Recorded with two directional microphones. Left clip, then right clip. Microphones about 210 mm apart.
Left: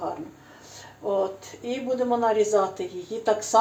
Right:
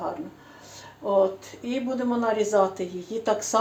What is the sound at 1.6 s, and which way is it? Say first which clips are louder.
Speech: left 2 dB; 20° right (ahead or behind).